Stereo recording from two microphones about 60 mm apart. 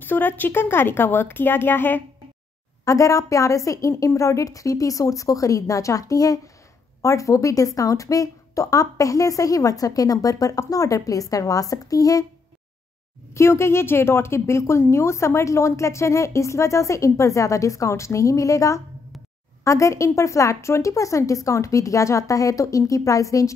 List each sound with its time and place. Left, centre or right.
0.0 s speech: left
2.8 s a woman's voice: left
7.0 s a woman's voice: left
13.3 s a woman's voice: left